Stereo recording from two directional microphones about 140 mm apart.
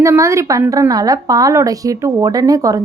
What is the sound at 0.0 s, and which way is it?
A woman's voice, 20° right (ahead or behind).